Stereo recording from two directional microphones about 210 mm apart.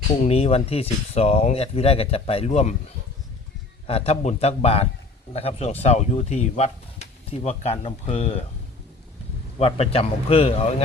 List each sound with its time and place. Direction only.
0.2 s speech: 30° left (ahead or behind)
3.8 s speech: 30° left (ahead or behind)
9.6 s speech: 30° left (ahead or behind)